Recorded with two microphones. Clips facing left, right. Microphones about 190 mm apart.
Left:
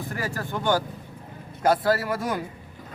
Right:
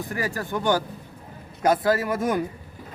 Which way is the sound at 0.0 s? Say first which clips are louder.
Right 2 dB; 15° right (ahead or behind).